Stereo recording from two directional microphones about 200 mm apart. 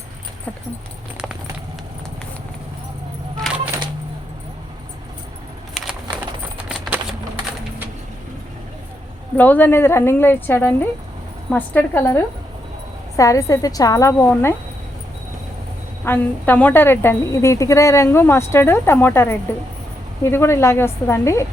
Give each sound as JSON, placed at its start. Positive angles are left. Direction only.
{"t": 5.7, "sound": "a sound", "side_deg": 0}
{"t": 9.4, "sound": "a woman's voice", "side_deg": 10}
{"t": 16.0, "sound": "a woman's voice", "side_deg": 10}